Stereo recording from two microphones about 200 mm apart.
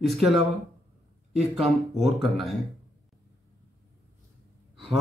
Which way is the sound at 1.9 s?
Centre (ahead or behind).